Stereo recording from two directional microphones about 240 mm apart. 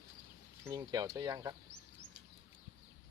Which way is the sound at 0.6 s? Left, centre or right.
Centre.